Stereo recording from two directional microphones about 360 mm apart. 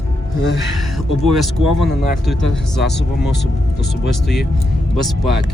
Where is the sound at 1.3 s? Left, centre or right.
Centre.